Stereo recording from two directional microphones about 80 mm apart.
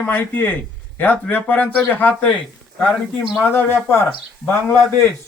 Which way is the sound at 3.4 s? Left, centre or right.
Left.